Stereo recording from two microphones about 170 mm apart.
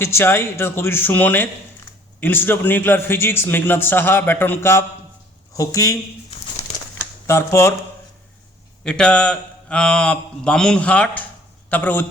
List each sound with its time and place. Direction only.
0.0 s a man's voice: 15° left (ahead or behind)
7.3 s a man's voice: 15° left (ahead or behind)
8.8 s a man's voice: 5° left (ahead or behind)